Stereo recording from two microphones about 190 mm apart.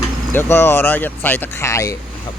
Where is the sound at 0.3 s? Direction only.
10° left (ahead or behind).